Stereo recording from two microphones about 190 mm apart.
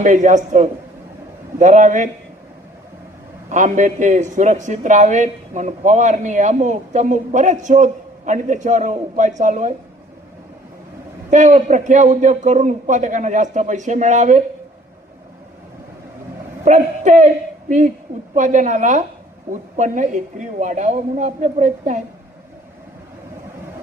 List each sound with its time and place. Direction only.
0.0 s a man's voice: 40° right (ahead or behind)
3.5 s a man's voice: 40° right (ahead or behind)
11.3 s a man's voice: 40° right (ahead or behind)
16.6 s a man's voice: 40° right (ahead or behind)